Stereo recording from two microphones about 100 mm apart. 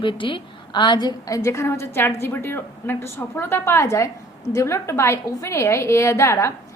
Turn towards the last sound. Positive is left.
turn(degrees=30)  # may be behind; listen again after turning